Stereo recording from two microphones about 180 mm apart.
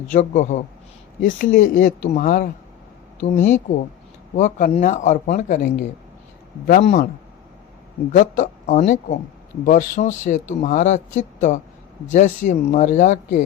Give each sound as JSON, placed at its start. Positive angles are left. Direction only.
{"t": 0.1, "sound": "a man's voice", "side_deg": 40}
{"t": 8.1, "sound": "speech", "side_deg": 45}